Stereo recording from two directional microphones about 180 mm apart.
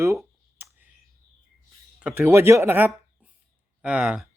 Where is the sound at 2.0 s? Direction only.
10° right (ahead or behind).